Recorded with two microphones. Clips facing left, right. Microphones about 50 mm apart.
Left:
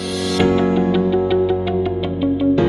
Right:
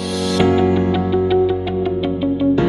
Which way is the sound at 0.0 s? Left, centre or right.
Centre.